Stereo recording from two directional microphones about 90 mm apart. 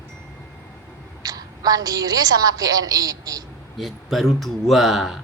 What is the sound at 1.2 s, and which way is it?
A woman's voice, 45° right (ahead or behind).